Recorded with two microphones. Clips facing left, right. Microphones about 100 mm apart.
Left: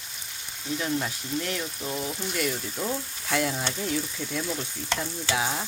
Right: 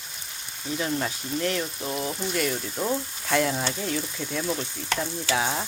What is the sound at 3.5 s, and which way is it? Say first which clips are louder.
Frying: right 2 dB; 10° right (ahead or behind).